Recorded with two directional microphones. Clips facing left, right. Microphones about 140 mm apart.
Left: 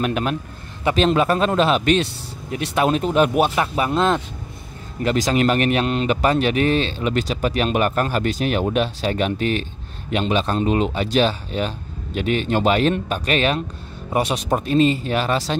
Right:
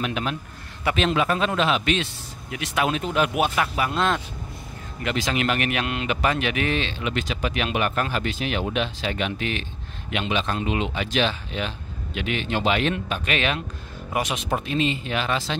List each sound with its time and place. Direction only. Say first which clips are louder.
0.0 s a man's voice: left 5 dB; 45° left (ahead or behind); by 4.2 s 25° left (ahead or behind)
5.0 s speech: left 6 dB; 40° left (ahead or behind)